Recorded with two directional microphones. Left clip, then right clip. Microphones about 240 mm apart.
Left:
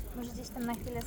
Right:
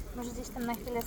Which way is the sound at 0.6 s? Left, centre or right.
Centre.